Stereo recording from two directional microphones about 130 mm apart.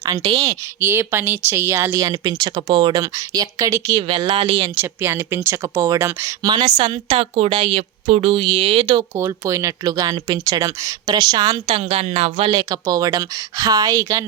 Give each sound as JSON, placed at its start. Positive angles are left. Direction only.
{"t": 0.0, "sound": "a woman's voice", "side_deg": -30}
{"t": 0.8, "sound": "speech", "side_deg": -15}
{"t": 4.2, "sound": "speech", "side_deg": -45}
{"t": 4.7, "sound": "speech", "side_deg": -15}
{"t": 9.1, "sound": "speech", "side_deg": -20}
{"t": 11.7, "sound": "speech", "side_deg": -50}
{"t": 12.5, "sound": "speech", "side_deg": -30}